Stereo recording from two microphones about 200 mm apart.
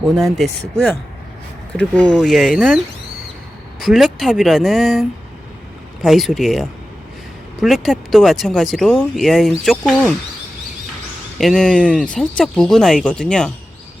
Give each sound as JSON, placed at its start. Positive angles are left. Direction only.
{"t": 0.3, "sound": "speech", "side_deg": 0}
{"t": 11.3, "sound": "speech", "side_deg": 5}